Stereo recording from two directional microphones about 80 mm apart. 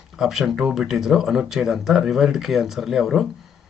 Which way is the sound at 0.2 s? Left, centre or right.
Centre.